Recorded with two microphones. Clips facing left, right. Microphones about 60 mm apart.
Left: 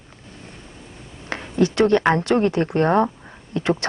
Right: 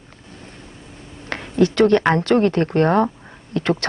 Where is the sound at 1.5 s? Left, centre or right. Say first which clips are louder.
Right 2 dB; right.